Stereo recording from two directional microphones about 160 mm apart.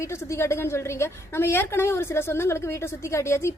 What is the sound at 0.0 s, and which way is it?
A woman's voice, 15° left (ahead or behind).